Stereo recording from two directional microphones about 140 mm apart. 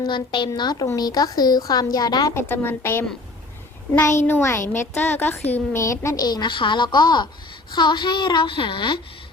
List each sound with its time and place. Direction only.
0.1 s a woman's voice: 35° left (ahead or behind)
2.3 s a woman's voice: 15° left (ahead or behind)
4.3 s a woman's voice: 15° left (ahead or behind); by 9.0 s 35° left (ahead or behind)